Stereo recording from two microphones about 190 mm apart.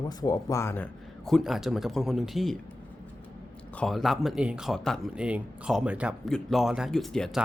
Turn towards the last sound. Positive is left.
turn(degrees=5)  # may be behind; listen again after turning